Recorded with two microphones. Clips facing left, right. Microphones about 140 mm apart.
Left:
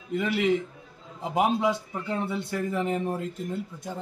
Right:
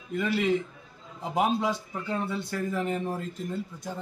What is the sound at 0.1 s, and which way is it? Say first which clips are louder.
Speech: left 1 dB; 15° left (ahead or behind).